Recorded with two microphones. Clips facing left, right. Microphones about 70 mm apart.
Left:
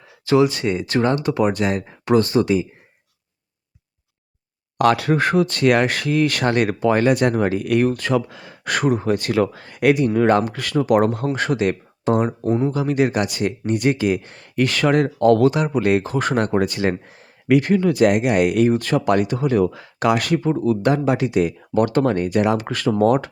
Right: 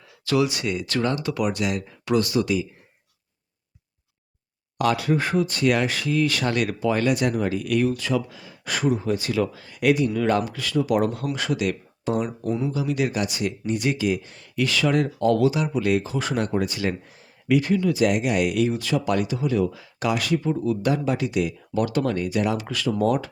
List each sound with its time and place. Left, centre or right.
0.3 s speech: left
4.8 s speech: left